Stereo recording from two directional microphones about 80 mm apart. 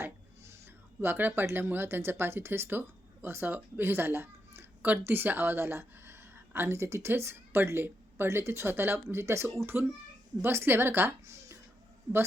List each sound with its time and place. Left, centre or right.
1.0 s speech: right